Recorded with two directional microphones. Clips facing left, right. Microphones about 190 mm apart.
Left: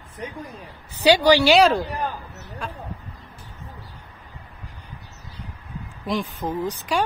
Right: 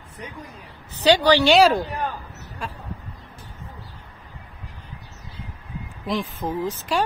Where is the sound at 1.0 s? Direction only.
10° left (ahead or behind).